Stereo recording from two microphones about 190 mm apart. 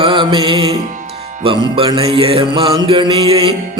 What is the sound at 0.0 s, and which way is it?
Music, 25° right (ahead or behind).